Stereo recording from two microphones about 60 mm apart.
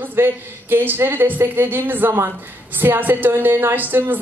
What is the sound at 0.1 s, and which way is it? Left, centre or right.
A woman's voice, right.